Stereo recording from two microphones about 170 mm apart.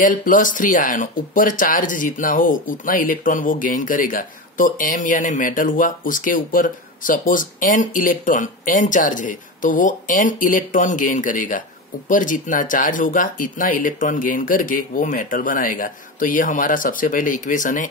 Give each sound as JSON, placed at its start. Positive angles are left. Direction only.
{"t": 0.0, "sound": "speech", "side_deg": 50}